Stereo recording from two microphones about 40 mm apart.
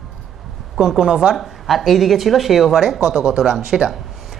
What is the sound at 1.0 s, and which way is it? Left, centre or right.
Speech, right.